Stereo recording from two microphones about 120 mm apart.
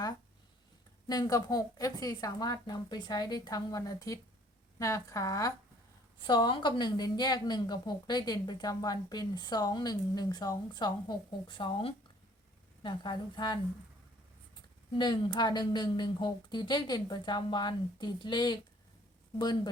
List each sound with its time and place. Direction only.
1.0 s a woman's voice: 30° left (ahead or behind)
6.2 s a woman's voice: 40° left (ahead or behind)
14.9 s a woman's voice: 40° left (ahead or behind)